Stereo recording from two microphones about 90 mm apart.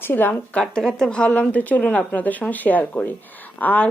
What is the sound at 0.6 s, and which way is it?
Speech, 5° left (ahead or behind).